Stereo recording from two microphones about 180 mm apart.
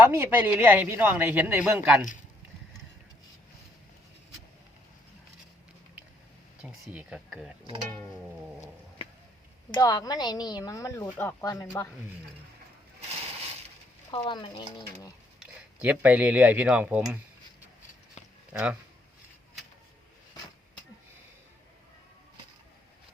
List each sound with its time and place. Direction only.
0.0 s a man's voice: 10° right (ahead or behind)
6.6 s speech: 5° right (ahead or behind)
9.7 s a woman's voice: 20° left (ahead or behind)
14.1 s a woman's voice: 25° left (ahead or behind)
15.4 s speech: 10° right (ahead or behind)
18.5 s a man's voice: 5° right (ahead or behind)